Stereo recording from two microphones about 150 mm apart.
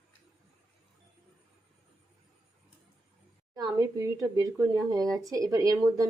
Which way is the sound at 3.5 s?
25° right (ahead or behind).